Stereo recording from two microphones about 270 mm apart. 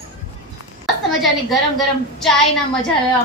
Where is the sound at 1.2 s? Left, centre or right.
Centre.